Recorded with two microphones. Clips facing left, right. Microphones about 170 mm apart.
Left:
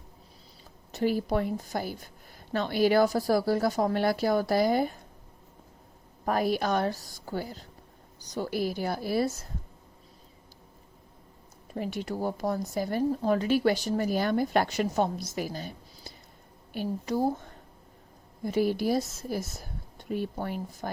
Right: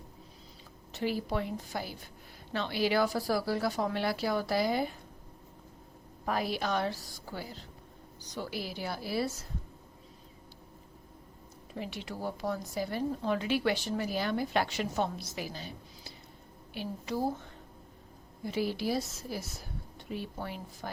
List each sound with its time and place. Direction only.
0.9 s speech: 45° left (ahead or behind)
6.2 s speech: 45° left (ahead or behind)
11.7 s speech: 45° left (ahead or behind)